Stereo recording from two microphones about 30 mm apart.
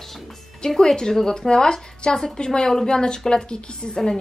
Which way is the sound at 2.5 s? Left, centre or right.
Left.